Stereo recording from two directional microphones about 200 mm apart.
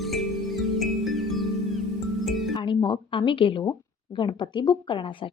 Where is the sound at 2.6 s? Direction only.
20° left (ahead or behind).